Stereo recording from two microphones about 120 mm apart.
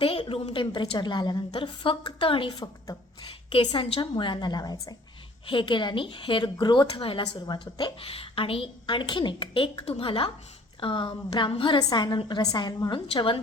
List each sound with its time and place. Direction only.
0.0 s a woman's voice: 50° left (ahead or behind)
2.5 s a woman's voice: 30° left (ahead or behind)
3.5 s a woman's voice: 45° left (ahead or behind)
7.2 s a woman's voice: 35° left (ahead or behind)